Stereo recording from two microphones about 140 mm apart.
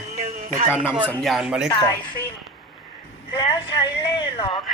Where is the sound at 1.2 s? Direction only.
Centre (ahead or behind).